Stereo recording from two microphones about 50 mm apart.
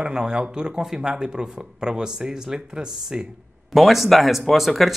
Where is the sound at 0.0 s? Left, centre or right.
Centre.